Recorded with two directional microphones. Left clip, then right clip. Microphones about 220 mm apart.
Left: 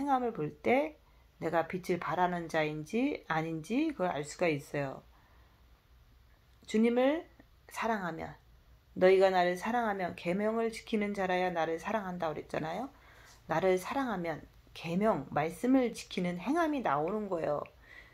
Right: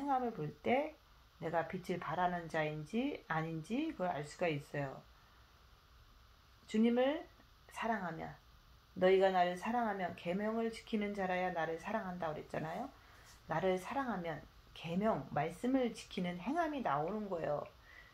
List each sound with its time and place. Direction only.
0.0 s speech: 40° left (ahead or behind)
6.7 s speech: 40° left (ahead or behind)